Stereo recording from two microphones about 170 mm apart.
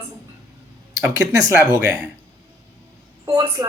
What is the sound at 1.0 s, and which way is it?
Speech, 15° right (ahead or behind).